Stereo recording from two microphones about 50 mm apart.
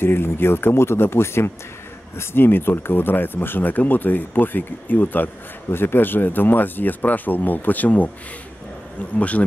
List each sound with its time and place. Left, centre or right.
0.0 s speech: left
2.1 s speech: left
5.7 s speech: left
9.1 s a man's voice: left